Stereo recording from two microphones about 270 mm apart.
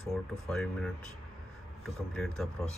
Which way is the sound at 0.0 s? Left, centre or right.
Centre.